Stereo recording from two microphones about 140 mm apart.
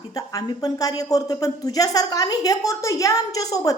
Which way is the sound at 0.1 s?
25° left (ahead or behind).